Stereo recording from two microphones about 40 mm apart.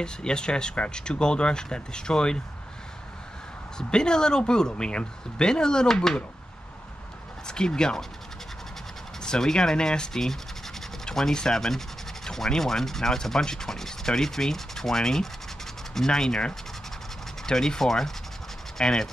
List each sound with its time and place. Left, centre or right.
0.0 s speech: left
3.7 s speech: centre
7.4 s speech: centre
9.2 s sanding: centre